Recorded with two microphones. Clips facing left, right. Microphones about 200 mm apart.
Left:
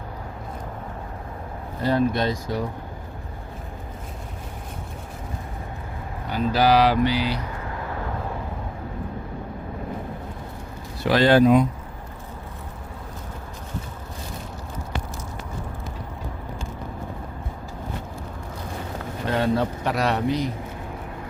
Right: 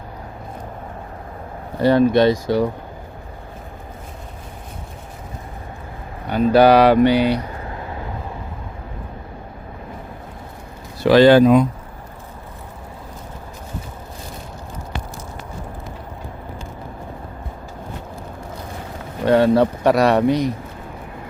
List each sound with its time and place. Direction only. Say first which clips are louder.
1.8 s speech: right 8 dB; 75° right (ahead or behind)
6.2 s speech: right 8 dB; 60° right (ahead or behind)
11.0 s speech: right 7 dB; 90° right
19.2 s speech: right 9 dB; 70° right (ahead or behind)